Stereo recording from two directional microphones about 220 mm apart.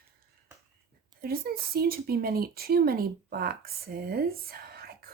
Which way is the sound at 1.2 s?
45° right (ahead or behind).